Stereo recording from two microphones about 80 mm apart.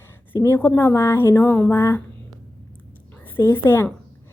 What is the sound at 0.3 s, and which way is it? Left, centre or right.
A woman's voice, left.